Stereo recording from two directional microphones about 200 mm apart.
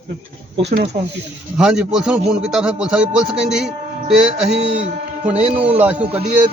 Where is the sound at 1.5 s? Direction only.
5° right (ahead or behind).